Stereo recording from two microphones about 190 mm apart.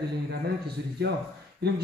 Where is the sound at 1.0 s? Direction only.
60° right (ahead or behind).